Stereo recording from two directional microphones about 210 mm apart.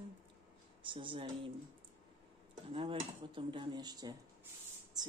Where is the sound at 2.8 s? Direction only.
25° right (ahead or behind).